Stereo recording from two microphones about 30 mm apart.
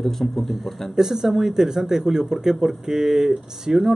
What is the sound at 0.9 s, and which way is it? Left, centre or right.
Speech, centre.